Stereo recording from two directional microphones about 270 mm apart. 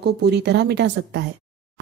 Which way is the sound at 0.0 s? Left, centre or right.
Right.